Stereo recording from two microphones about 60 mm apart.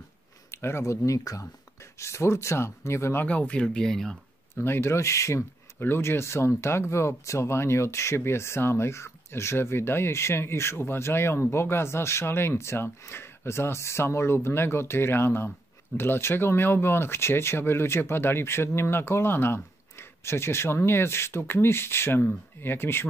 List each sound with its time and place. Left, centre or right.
0.5 s speech: left
1.0 s speech: left
2.0 s speech: left
3.3 s speech: left; by 4.2 s centre
4.6 s speech: left
5.8 s speech: left